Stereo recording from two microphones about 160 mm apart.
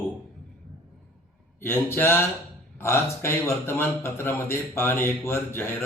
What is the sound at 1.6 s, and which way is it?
A man's voice, 15° left (ahead or behind).